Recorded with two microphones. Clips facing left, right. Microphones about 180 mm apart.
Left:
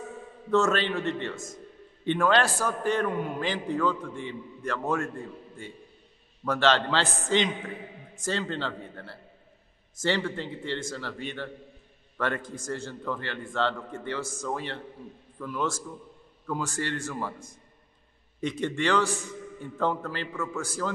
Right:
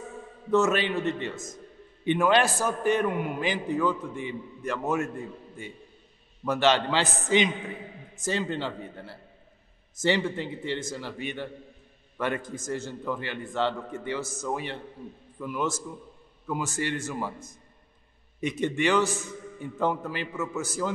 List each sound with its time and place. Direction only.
0.5 s a man's voice: 15° right (ahead or behind)
6.4 s a man's voice: 15° right (ahead or behind)
18.5 s a man's voice: 15° right (ahead or behind)